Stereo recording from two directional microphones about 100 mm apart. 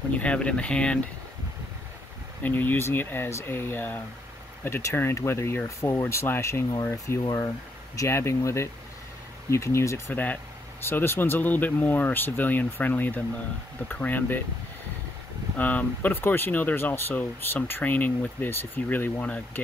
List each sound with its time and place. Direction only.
0.1 s speech: 10° left (ahead or behind)
2.4 s speech: 20° left (ahead or behind)
15.5 s speech: 15° left (ahead or behind)